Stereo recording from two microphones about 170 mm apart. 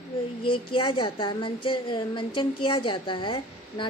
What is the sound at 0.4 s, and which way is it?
A woman's voice, 30° left (ahead or behind).